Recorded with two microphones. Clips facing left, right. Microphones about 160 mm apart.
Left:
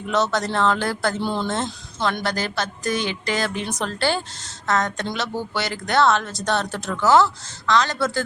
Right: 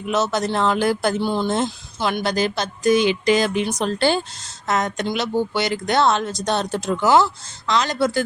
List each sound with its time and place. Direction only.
0.1 s speech: 10° right (ahead or behind)
1.2 s speech: 5° right (ahead or behind)